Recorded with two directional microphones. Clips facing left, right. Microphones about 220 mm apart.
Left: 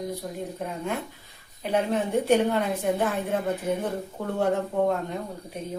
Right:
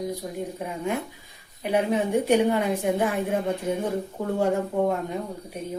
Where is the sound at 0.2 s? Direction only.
10° right (ahead or behind).